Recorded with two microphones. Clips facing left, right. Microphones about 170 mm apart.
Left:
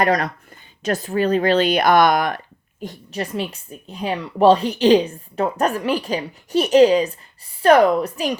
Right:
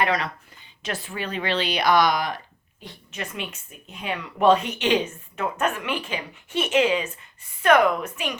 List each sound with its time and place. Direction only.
0.0 s speech: 45° left (ahead or behind)
2.8 s speech: 40° left (ahead or behind)